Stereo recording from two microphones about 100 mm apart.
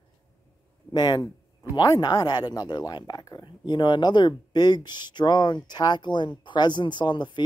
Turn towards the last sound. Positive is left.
turn(degrees=50)  # may be behind; listen again after turning